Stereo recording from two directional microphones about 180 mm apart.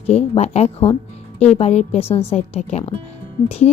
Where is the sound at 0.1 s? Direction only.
35° left (ahead or behind).